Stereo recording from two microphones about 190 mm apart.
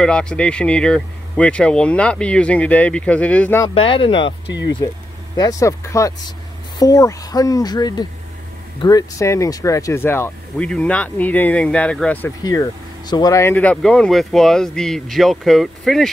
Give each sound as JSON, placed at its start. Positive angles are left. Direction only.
{"t": 0.0, "sound": "speech", "side_deg": 5}
{"t": 3.6, "sound": "speech", "side_deg": 25}
{"t": 12.4, "sound": "speech", "side_deg": 20}